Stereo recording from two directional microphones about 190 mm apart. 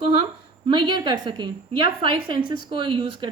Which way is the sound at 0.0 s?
25° right (ahead or behind).